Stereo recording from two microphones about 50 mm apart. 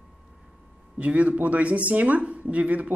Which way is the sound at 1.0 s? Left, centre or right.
Right.